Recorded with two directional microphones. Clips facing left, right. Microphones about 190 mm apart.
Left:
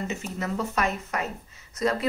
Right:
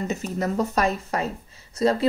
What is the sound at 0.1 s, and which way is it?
Speech, 40° right (ahead or behind).